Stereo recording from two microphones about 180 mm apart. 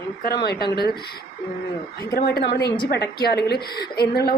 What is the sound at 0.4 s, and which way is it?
Speech, 60° left (ahead or behind).